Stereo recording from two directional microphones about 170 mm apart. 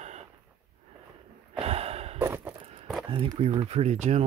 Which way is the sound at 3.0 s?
30° right (ahead or behind).